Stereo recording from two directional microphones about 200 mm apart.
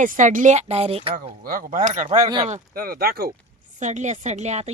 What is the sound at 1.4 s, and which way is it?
Speech, 45° right (ahead or behind).